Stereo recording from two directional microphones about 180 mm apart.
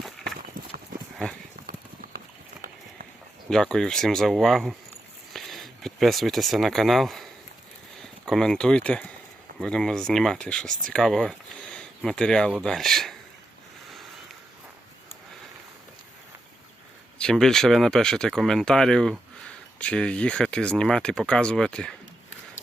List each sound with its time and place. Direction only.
1.6 s clip-clop: 55° right (ahead or behind)
3.5 s speech: 5° left (ahead or behind)
10.7 s speech: 50° right (ahead or behind)
10.9 s speech: 5° left (ahead or behind)
17.2 s speech: 5° left (ahead or behind)